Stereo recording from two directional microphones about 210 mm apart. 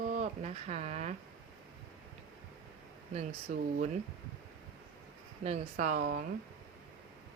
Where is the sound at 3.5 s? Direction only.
40° right (ahead or behind).